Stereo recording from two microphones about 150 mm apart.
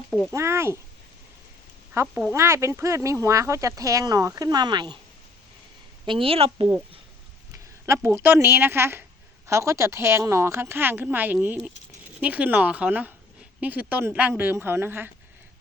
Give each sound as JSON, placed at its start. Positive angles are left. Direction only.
{"t": 0.3, "sound": "a woman's voice", "side_deg": -20}
{"t": 1.9, "sound": "speech", "side_deg": -10}
{"t": 6.1, "sound": "a woman's voice", "side_deg": -35}
{"t": 7.9, "sound": "a woman's voice", "side_deg": -15}